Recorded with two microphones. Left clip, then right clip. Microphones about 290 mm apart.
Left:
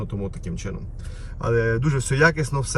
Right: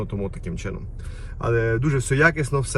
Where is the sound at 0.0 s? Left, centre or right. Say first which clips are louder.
Right 2 dB; centre.